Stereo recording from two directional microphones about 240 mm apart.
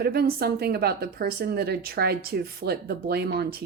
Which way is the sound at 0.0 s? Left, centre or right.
Right.